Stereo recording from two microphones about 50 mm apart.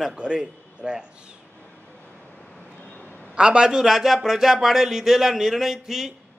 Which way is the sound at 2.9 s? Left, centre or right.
Left.